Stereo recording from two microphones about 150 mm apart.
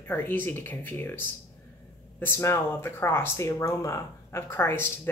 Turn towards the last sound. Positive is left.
turn(degrees=15)  # may be behind; listen again after turning